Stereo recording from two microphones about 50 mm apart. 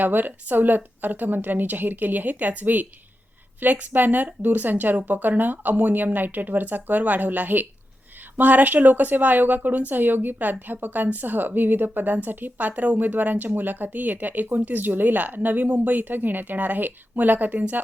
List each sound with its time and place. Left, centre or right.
0.0 s a woman's voice: right